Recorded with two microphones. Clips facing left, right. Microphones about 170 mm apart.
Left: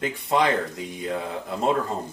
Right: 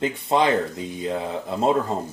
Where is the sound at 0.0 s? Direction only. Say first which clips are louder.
Right 2 dB; 25° right (ahead or behind).